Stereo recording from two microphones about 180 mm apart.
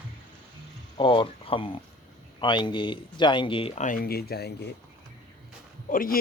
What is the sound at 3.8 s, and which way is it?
Speech, 50° left (ahead or behind).